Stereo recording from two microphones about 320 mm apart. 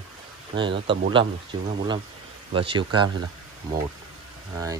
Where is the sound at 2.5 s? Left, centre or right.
Centre.